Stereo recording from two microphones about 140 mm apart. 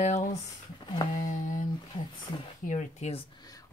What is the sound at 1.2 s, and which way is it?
Speech, 65° left (ahead or behind).